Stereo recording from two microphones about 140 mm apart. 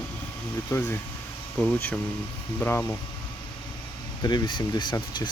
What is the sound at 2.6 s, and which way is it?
Speech, 15° left (ahead or behind).